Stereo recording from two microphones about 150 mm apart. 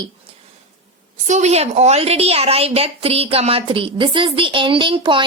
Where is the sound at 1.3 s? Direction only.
50° right (ahead or behind).